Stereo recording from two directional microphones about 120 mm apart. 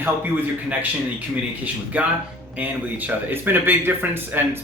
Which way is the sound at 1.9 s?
15° right (ahead or behind).